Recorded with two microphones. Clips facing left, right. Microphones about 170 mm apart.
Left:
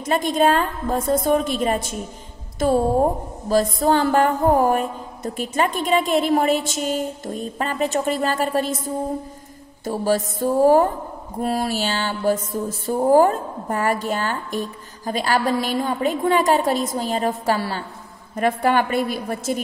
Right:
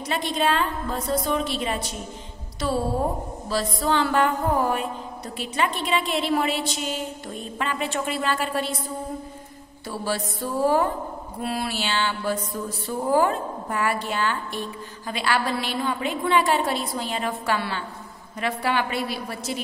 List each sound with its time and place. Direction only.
0.0 s music: 45° left (ahead or behind)
18.3 s music: 50° left (ahead or behind)